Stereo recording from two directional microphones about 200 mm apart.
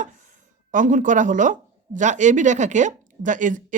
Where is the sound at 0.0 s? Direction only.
40° right (ahead or behind).